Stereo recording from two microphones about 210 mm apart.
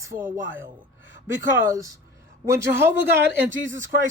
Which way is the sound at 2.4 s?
15° right (ahead or behind).